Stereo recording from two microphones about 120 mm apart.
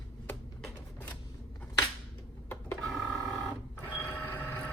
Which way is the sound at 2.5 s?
15° left (ahead or behind).